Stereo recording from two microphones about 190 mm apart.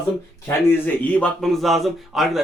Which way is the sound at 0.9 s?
5° left (ahead or behind).